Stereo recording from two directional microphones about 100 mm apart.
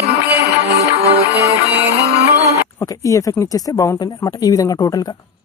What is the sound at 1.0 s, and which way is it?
Music, 90° right.